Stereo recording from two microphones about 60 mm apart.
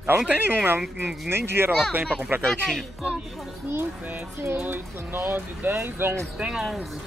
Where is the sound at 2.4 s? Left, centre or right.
Centre.